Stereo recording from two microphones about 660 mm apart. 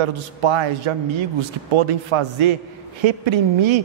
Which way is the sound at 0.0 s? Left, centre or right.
Right.